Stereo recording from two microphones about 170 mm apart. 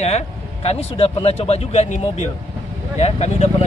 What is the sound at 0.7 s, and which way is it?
Speech, 35° left (ahead or behind).